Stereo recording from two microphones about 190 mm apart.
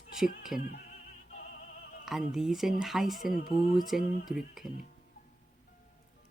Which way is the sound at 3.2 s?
50° left (ahead or behind).